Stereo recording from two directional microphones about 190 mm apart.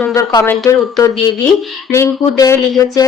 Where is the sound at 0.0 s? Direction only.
15° left (ahead or behind).